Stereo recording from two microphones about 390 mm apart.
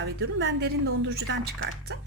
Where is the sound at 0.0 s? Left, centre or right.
Right.